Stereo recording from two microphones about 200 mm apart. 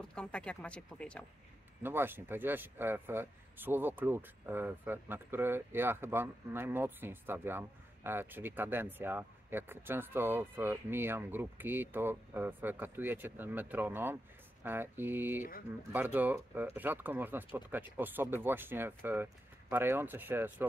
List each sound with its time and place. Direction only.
0.1 s speech: 5° left (ahead or behind)
1.8 s speech: 10° right (ahead or behind)